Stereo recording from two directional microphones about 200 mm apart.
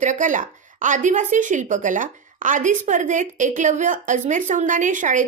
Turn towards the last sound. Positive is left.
turn(degrees=-40)  # may be behind; listen again after turning